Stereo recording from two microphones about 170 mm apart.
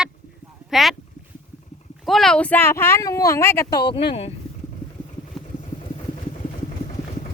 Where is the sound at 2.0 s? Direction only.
Centre (ahead or behind); by 4.3 s 35° left (ahead or behind).